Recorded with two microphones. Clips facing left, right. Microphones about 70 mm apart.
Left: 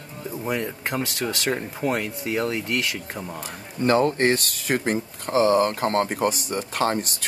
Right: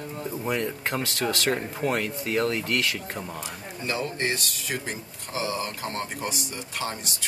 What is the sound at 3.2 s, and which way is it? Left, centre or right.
Speech, centre.